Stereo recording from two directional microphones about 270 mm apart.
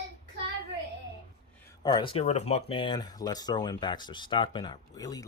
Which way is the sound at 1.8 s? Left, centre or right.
Centre.